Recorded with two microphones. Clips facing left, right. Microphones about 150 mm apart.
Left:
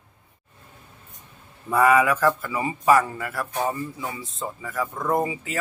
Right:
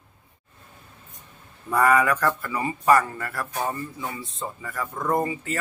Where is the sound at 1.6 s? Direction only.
5° left (ahead or behind).